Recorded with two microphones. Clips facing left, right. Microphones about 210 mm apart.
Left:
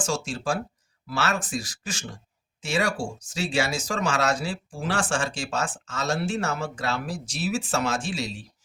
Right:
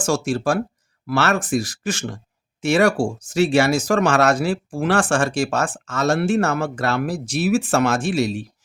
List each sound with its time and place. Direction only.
0.0 s speech: 75° right (ahead or behind)
1.0 s speech: 60° right (ahead or behind)
2.6 s speech: 75° right (ahead or behind)
3.2 s speech: 65° right (ahead or behind)